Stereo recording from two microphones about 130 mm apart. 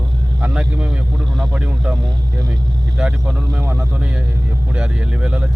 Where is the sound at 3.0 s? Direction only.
10° right (ahead or behind).